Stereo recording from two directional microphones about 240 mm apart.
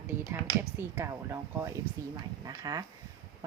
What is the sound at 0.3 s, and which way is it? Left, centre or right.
Speech, centre.